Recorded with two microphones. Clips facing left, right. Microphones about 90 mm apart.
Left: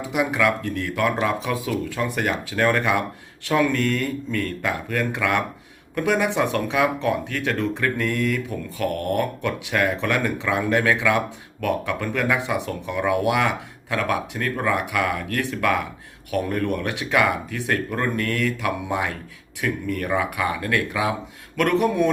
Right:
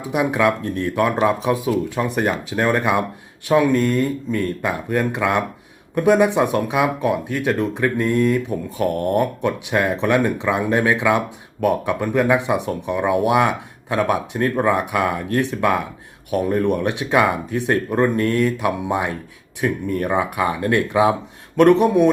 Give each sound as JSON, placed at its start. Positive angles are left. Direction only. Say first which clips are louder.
{"t": 0.0, "sound": "speech", "louder": "right 3 dB", "side_deg": -20}